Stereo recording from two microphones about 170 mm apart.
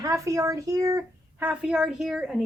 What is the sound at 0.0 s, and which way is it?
Speech, 20° right (ahead or behind).